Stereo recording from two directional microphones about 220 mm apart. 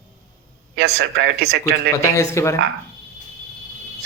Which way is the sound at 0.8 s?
50° right (ahead or behind).